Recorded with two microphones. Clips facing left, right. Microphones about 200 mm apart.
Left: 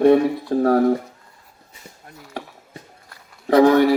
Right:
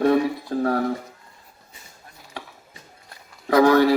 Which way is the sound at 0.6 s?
40° left (ahead or behind).